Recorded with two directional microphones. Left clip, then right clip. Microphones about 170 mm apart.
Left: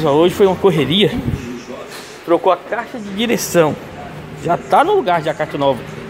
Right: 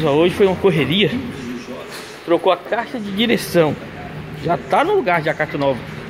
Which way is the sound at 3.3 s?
10° left (ahead or behind).